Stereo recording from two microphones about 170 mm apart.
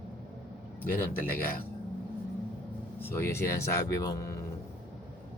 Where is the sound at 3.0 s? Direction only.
15° left (ahead or behind).